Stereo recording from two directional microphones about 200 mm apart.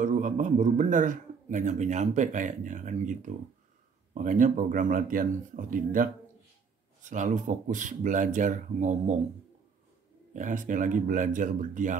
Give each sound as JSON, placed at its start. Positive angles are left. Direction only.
{"t": 0.0, "sound": "a man's voice", "side_deg": -40}
{"t": 10.3, "sound": "a man's voice", "side_deg": -40}